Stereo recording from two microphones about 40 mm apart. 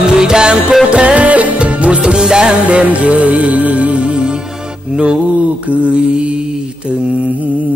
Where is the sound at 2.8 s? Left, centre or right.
Right.